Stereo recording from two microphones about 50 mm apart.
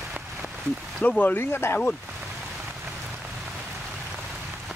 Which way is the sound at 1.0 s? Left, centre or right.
Left.